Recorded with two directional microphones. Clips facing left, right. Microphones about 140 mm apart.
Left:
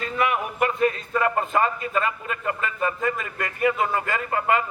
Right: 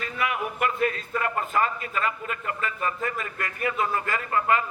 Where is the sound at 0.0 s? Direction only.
30° left (ahead or behind).